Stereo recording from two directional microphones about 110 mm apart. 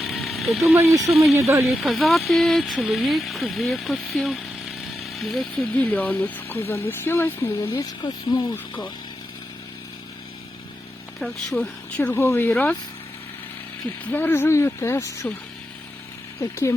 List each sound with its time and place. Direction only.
0.0 s a sound: centre (ahead or behind)
1.1 s speech: centre (ahead or behind)
1.4 s speech: 25° right (ahead or behind)
1.6 s speech: centre (ahead or behind); by 7.8 s 20° left (ahead or behind)
7.8 s speech: 35° left (ahead or behind)
11.5 s speech: 10° left (ahead or behind)
14.0 s speech: 15° left (ahead or behind)
16.4 s speech: 25° left (ahead or behind)